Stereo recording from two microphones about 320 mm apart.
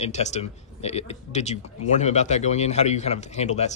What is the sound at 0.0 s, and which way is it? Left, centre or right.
Speech, left.